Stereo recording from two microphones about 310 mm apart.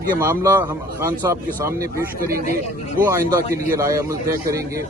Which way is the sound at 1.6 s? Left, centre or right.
Centre.